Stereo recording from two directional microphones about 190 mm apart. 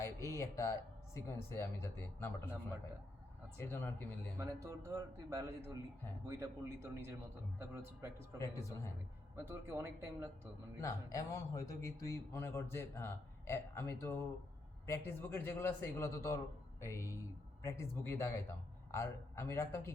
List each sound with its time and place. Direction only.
0.0 s a man's voice: 15° left (ahead or behind)
3.6 s a man's voice: 10° left (ahead or behind)
4.4 s speech: 15° right (ahead or behind)
8.4 s a man's voice: 15° left (ahead or behind)
9.3 s speech: 10° right (ahead or behind)
10.8 s a man's voice: 15° left (ahead or behind)